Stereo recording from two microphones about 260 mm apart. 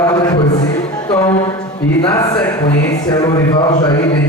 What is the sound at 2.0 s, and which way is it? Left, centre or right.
Speech, centre.